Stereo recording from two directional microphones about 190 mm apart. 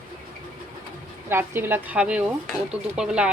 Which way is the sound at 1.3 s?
10° right (ahead or behind).